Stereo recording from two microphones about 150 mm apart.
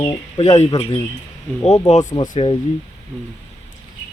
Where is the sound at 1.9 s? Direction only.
50° left (ahead or behind).